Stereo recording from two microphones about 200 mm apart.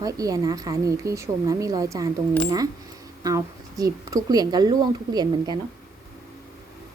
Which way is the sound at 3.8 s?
15° right (ahead or behind).